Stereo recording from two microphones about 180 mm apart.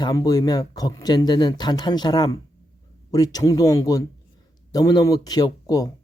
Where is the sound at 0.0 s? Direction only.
20° left (ahead or behind).